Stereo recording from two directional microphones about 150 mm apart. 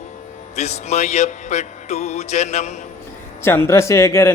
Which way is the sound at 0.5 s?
45° left (ahead or behind).